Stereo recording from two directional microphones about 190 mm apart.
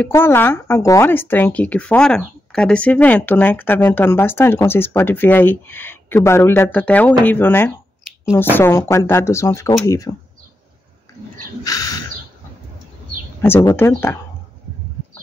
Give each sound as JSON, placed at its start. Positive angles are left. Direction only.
{"t": 0.0, "sound": "speech", "side_deg": 10}
{"t": 11.6, "sound": "a sound", "side_deg": 20}
{"t": 13.4, "sound": "speech", "side_deg": 10}